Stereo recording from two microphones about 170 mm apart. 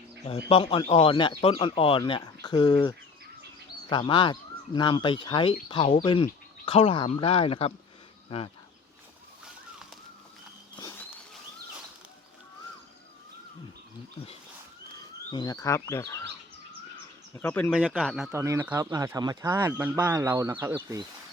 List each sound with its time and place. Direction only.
0.3 s speech: 35° left (ahead or behind)
10.8 s a sound: 20° left (ahead or behind)
15.3 s speech: 25° left (ahead or behind)
17.3 s speech: 10° left (ahead or behind)
17.7 s speech: 5° right (ahead or behind)
18.3 s speech: 15° right (ahead or behind)